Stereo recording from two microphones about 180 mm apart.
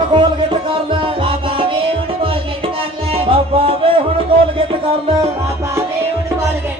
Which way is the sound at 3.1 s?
30° right (ahead or behind).